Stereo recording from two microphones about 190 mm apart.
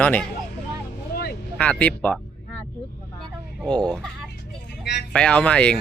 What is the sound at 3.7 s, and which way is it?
Speech, 5° left (ahead or behind).